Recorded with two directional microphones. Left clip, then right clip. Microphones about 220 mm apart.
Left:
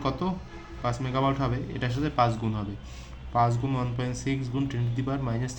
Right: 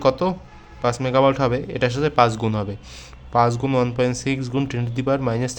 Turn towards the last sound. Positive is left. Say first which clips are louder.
# right 11 dB
turn(degrees=-40)  # may be behind; listen again after turning